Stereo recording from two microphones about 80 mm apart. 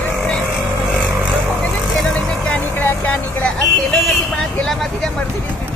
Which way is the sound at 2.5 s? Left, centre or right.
Centre.